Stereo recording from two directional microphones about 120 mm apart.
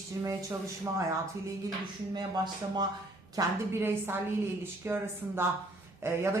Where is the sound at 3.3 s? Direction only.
20° right (ahead or behind).